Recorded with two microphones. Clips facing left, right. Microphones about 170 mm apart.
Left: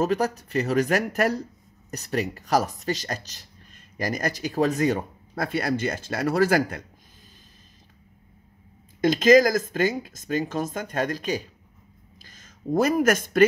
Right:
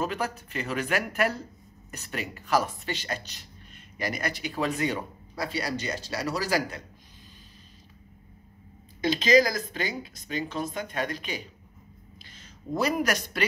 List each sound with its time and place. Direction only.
0.0 s speech: 40° left (ahead or behind)
9.0 s speech: 50° left (ahead or behind)